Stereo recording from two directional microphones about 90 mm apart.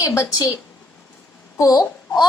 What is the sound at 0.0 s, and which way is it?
Speech, 35° left (ahead or behind).